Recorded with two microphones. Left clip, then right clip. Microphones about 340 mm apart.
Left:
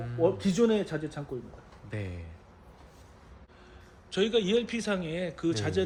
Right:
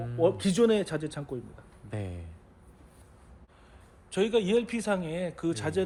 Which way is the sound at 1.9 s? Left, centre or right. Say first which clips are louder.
Even; centre.